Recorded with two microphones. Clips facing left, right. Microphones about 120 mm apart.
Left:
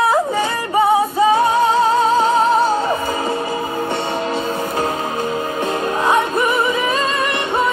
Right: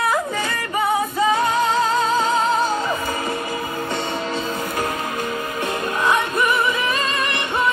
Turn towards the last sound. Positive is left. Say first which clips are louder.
# left 4 dB
turn(degrees=35)  # may be behind; listen again after turning